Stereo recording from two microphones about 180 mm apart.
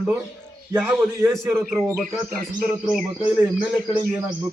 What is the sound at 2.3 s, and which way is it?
A man's voice, centre (ahead or behind).